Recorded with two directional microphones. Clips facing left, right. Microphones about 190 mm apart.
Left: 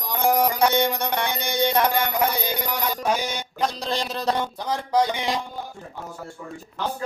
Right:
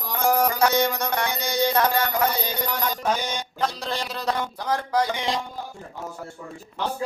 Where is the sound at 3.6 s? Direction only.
20° left (ahead or behind).